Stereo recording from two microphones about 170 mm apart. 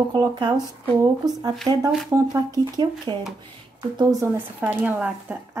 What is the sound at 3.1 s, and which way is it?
A woman's voice, 25° right (ahead or behind).